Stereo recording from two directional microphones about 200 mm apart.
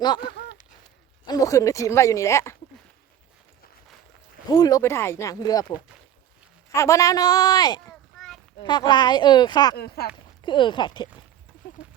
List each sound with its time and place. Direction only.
0.0 s speech: 20° left (ahead or behind)
1.3 s speech: 15° left (ahead or behind)
4.4 s speech: 20° left (ahead or behind)
6.7 s speech: 15° left (ahead or behind)
9.7 s speech: 50° left (ahead or behind)
10.4 s speech: 25° left (ahead or behind)